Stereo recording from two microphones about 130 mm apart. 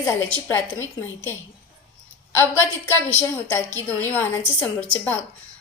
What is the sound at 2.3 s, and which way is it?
A woman's voice, 20° left (ahead or behind).